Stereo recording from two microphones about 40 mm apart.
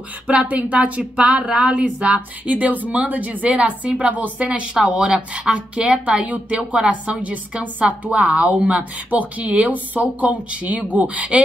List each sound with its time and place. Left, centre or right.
0.3 s speech: right
2.4 s speech: right
4.5 s speech: right
6.2 s speech: right